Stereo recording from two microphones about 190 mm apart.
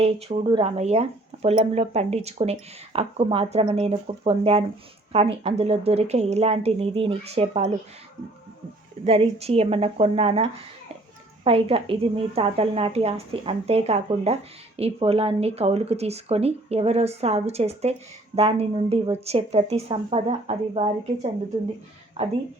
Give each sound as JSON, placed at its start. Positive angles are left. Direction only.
{"t": 0.0, "sound": "speech", "side_deg": -30}
{"t": 9.0, "sound": "speech", "side_deg": -30}